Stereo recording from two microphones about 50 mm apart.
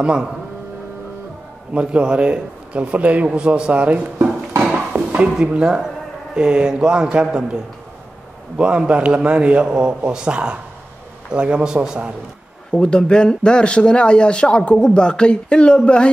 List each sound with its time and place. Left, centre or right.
0.0 s speech: centre
1.7 s speech: right
8.5 s speech: right
12.7 s speech: centre